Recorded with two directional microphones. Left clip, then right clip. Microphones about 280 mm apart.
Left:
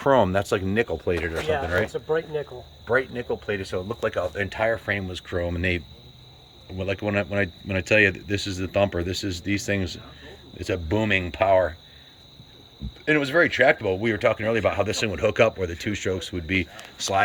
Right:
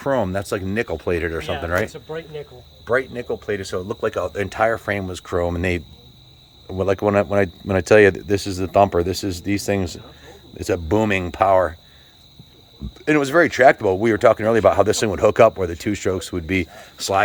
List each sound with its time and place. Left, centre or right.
0.0 s speech: centre
1.9 s speech: left
2.8 s speech: centre
6.9 s speech: centre
13.1 s speech: centre